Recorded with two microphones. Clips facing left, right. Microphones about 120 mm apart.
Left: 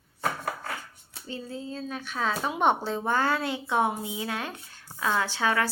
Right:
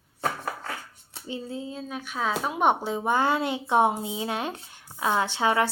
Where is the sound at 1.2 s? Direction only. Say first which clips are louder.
Right 3 dB; 20° right (ahead or behind).